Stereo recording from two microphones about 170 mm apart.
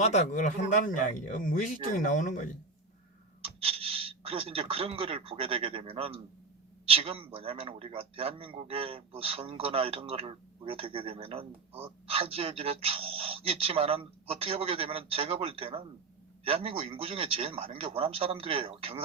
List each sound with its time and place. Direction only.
0.0 s speech: 40° left (ahead or behind)
3.4 s a man's voice: 35° right (ahead or behind)